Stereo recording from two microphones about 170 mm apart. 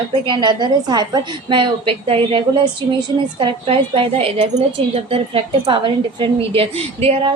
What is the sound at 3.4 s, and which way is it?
A woman's voice, 30° right (ahead or behind).